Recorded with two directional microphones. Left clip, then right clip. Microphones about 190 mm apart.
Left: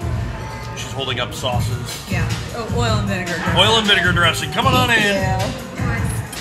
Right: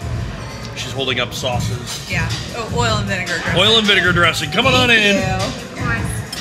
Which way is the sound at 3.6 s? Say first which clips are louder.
Right 1 dB; 15° right (ahead or behind).